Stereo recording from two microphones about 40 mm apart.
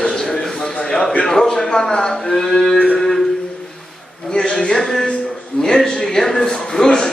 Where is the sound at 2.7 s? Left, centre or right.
Left.